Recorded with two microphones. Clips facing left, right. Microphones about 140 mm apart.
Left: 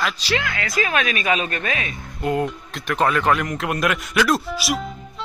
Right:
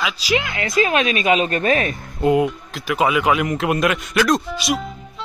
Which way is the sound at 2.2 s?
15° right (ahead or behind).